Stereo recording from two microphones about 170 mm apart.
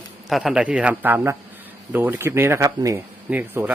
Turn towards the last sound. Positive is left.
turn(degrees=-10)  # may be behind; listen again after turning